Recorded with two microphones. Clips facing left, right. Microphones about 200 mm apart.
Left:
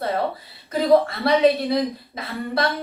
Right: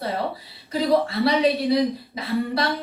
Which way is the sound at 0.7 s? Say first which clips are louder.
Left 3 dB; 50° left (ahead or behind).